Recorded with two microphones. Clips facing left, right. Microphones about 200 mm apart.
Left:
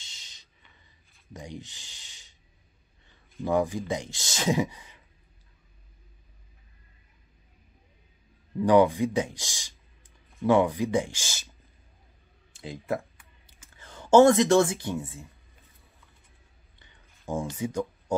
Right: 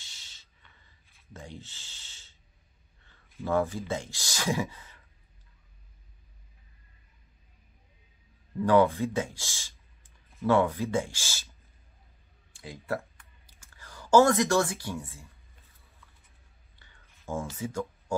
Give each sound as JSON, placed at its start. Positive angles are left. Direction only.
{"t": 0.0, "sound": "a sound", "side_deg": 20}
{"t": 3.4, "sound": "speech", "side_deg": 15}
{"t": 8.5, "sound": "speech", "side_deg": 15}
{"t": 12.5, "sound": "computer keyboard", "side_deg": 20}
{"t": 16.7, "sound": "a sound", "side_deg": 20}
{"t": 17.6, "sound": "speech", "side_deg": 15}